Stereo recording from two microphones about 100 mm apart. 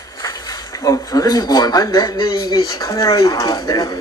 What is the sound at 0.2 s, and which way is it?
Speech, 35° left (ahead or behind).